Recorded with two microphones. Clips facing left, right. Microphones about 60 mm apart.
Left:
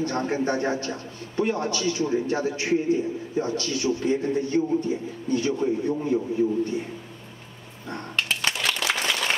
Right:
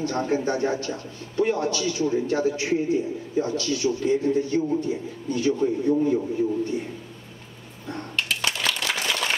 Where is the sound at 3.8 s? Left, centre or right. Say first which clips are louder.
Right 1 dB; left.